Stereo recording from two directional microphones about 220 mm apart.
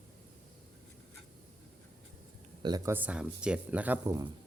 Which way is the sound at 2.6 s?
15° right (ahead or behind).